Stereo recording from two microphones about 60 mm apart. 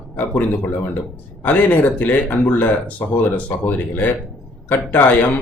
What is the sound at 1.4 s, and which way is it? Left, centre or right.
Speech, left.